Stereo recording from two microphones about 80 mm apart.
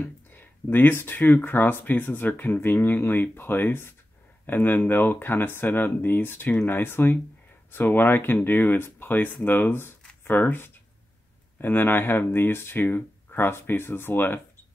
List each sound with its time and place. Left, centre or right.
0.0 s speech: left